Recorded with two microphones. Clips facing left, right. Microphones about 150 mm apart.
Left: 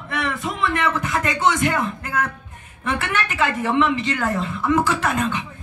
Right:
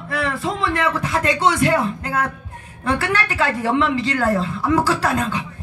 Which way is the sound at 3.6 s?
35° right (ahead or behind).